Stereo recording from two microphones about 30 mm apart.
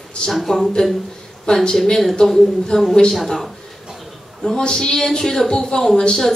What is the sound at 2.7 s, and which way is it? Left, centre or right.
Speech, left.